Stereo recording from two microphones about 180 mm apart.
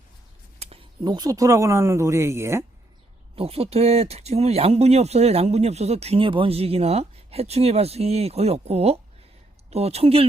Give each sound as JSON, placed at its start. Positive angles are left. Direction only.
{"t": 0.6, "sound": "speech", "side_deg": -30}
{"t": 3.3, "sound": "speech", "side_deg": -35}